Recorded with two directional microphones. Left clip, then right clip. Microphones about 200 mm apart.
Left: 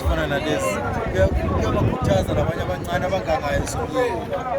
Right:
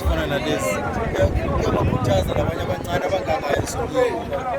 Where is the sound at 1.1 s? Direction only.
15° right (ahead or behind).